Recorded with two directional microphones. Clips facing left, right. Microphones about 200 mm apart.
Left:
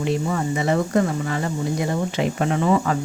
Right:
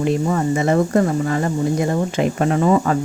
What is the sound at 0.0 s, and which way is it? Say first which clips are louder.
Speech: right 4 dB; 45° right (ahead or behind).